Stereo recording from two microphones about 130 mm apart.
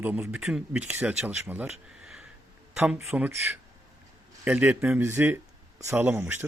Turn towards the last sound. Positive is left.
turn(degrees=-15)  # may be behind; listen again after turning